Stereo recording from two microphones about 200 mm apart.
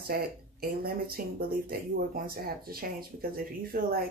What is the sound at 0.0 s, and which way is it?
Speech, 50° right (ahead or behind).